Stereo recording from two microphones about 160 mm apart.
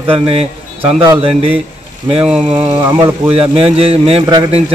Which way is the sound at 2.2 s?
5° right (ahead or behind).